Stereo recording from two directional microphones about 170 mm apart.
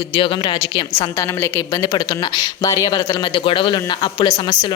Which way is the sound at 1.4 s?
20° left (ahead or behind).